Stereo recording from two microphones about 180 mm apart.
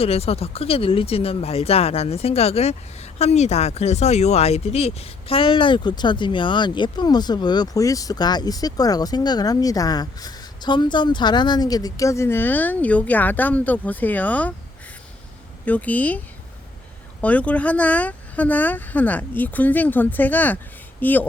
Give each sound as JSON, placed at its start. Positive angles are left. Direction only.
{"t": 0.0, "sound": "speech", "side_deg": 35}
{"t": 15.6, "sound": "speech", "side_deg": 10}